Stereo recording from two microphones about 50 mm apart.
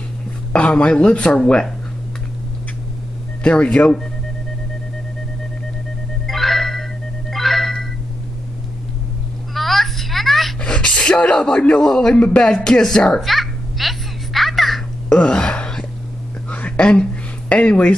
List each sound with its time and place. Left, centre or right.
0.6 s speech: left
3.4 s speech: left
6.2 s organ: centre
7.3 s music: centre
9.5 s a sound: centre
10.6 s speech: centre
13.2 s a sound: centre
15.0 s speech: centre
16.4 s a sound: left
17.5 s speech: left